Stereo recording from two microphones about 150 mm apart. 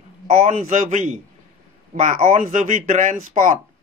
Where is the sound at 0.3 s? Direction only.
50° right (ahead or behind).